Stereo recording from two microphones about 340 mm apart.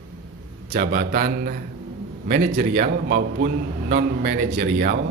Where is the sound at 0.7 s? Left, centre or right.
Right.